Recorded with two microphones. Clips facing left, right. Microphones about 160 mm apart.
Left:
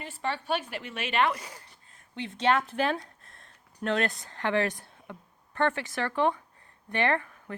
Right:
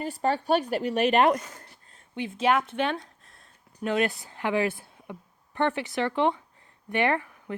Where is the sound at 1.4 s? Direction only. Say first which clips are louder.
Right 2 dB; 10° left (ahead or behind).